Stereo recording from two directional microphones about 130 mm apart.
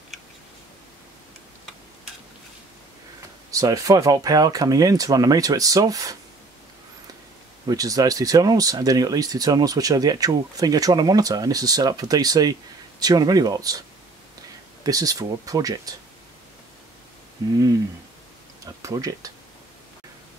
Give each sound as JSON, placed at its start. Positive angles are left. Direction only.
{"t": 3.5, "sound": "speech", "side_deg": -25}
{"t": 7.6, "sound": "speech", "side_deg": -30}
{"t": 18.6, "sound": "speech", "side_deg": -25}